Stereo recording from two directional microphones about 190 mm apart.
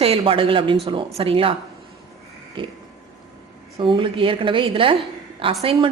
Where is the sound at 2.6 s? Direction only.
25° right (ahead or behind).